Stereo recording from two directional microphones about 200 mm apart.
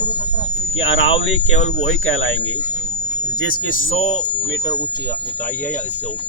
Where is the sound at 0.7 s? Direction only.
70° left (ahead or behind).